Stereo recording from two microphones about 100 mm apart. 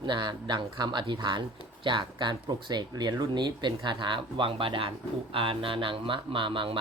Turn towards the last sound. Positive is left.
turn(degrees=-60)  # may be behind; listen again after turning